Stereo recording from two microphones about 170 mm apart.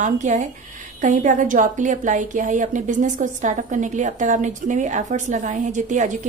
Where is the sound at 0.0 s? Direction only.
45° right (ahead or behind).